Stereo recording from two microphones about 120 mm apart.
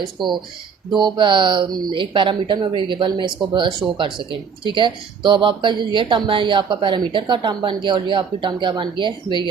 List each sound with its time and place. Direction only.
0.2 s speech: 40° right (ahead or behind)